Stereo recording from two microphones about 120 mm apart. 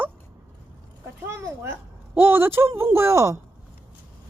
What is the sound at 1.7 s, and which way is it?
Speech, 20° right (ahead or behind).